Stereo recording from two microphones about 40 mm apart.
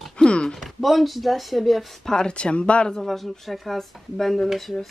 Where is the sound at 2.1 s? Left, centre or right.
Centre.